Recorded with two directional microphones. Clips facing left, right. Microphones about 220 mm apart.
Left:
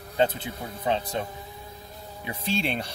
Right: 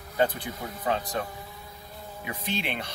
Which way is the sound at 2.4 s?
30° left (ahead or behind).